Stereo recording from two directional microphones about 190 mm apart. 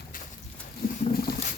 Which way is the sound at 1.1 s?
55° left (ahead or behind).